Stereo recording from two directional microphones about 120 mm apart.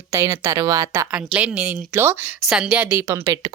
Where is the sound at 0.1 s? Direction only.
20° right (ahead or behind).